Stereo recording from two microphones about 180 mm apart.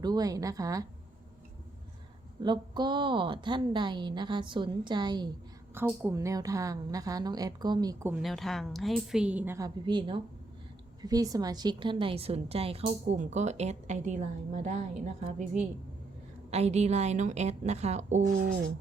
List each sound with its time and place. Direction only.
0.0 s a woman's voice: 20° right (ahead or behind)
2.4 s a woman's voice: 25° right (ahead or behind)
8.2 s a woman's voice: centre (ahead or behind); by 15.4 s 40° right (ahead or behind)
16.5 s a woman's voice: 35° right (ahead or behind)